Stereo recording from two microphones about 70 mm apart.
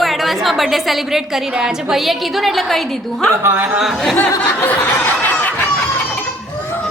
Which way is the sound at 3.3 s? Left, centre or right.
Right.